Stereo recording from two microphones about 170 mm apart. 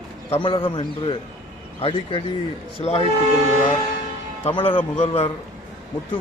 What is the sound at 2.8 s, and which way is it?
Speech, 35° left (ahead or behind).